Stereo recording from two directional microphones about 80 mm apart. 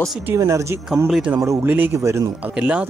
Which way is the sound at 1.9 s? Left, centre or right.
Right.